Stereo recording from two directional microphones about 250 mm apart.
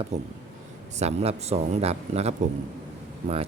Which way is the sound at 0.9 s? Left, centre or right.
Right.